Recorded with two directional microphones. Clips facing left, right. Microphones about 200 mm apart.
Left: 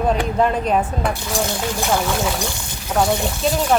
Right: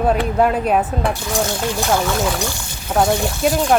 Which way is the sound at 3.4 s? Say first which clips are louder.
Right 3 dB; 10° right (ahead or behind).